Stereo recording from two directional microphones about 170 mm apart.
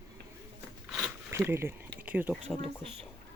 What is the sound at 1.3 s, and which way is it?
Speech, 15° right (ahead or behind).